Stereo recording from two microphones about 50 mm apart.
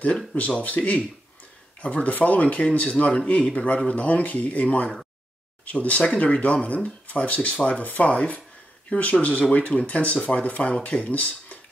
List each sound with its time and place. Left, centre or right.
0.3 s speech: left